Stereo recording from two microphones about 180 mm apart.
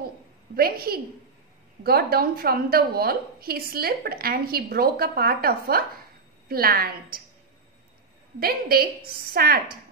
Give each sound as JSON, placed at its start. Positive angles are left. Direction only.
{"t": 0.6, "sound": "a woman's voice", "side_deg": -55}
{"t": 8.4, "sound": "a woman's voice", "side_deg": -55}